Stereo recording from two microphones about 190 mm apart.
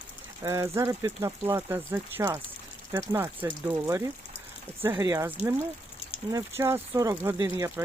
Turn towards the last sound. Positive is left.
turn(degrees=-15)  # may be behind; listen again after turning